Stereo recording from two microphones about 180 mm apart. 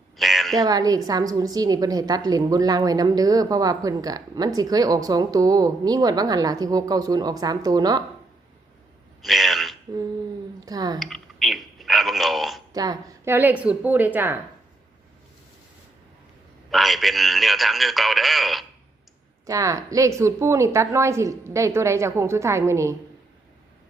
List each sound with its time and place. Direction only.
0.2 s a sound: centre (ahead or behind)
0.5 s a woman's voice: 20° right (ahead or behind)
9.2 s a sound: centre (ahead or behind)
10.7 s a woman's voice: 20° right (ahead or behind)
11.0 s telephone: centre (ahead or behind)
12.7 s a woman's voice: 20° right (ahead or behind)
16.7 s speech: centre (ahead or behind)
19.5 s a woman's voice: 20° right (ahead or behind)